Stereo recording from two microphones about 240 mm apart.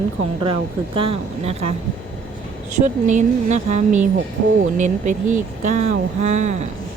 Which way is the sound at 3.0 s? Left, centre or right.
Right.